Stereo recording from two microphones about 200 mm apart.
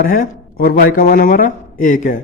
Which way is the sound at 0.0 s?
45° left (ahead or behind).